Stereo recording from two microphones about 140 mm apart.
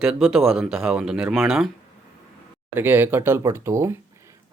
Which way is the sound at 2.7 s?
15° right (ahead or behind).